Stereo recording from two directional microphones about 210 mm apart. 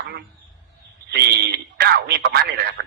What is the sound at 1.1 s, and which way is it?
Speech, 50° right (ahead or behind).